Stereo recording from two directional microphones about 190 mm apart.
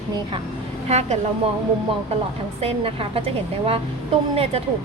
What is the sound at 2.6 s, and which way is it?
A woman's voice, 30° right (ahead or behind).